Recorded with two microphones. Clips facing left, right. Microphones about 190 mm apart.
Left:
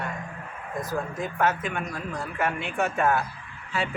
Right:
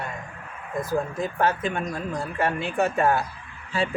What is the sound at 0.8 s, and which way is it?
Speech, 30° right (ahead or behind).